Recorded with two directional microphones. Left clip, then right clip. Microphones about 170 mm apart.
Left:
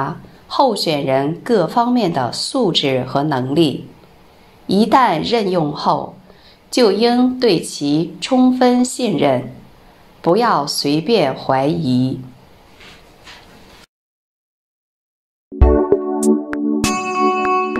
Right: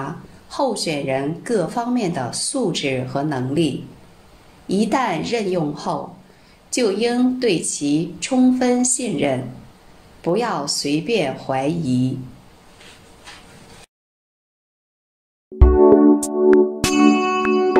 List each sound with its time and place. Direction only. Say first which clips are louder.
0.0 s a woman's voice: left 7 dB; 25° left (ahead or behind)
15.9 s music: right 2 dB; centre (ahead or behind)